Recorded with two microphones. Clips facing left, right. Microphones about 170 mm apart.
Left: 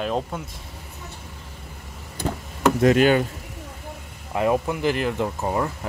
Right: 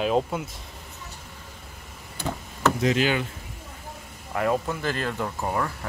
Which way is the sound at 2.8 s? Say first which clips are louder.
Left 9 dB; 50° left (ahead or behind).